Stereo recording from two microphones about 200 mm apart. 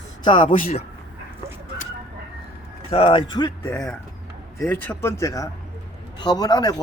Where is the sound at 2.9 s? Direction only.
25° left (ahead or behind).